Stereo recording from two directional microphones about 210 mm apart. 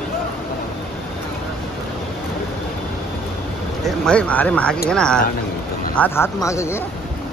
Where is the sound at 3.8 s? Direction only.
Centre (ahead or behind).